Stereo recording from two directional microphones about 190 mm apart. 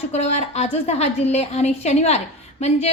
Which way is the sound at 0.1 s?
35° left (ahead or behind).